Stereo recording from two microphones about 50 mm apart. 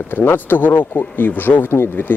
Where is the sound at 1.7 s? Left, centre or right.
Left.